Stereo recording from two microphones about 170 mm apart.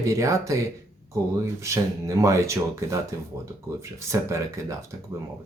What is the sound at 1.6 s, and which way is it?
Speech, 15° right (ahead or behind).